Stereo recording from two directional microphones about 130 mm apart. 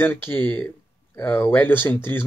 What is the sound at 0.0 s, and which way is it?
Speech, 15° left (ahead or behind).